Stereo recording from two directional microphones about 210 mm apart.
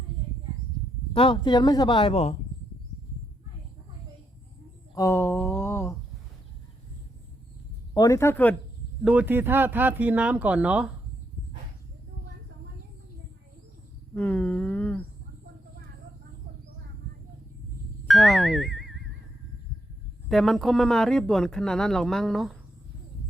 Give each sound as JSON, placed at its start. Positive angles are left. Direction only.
{"t": 1.1, "sound": "speech", "side_deg": 25}
{"t": 4.9, "sound": "a sound", "side_deg": 15}
{"t": 7.9, "sound": "speech", "side_deg": 15}
{"t": 9.0, "sound": "speech", "side_deg": -10}
{"t": 14.2, "sound": "humming", "side_deg": 5}
{"t": 18.1, "sound": "speech", "side_deg": 0}
{"t": 20.2, "sound": "a man's voice", "side_deg": 0}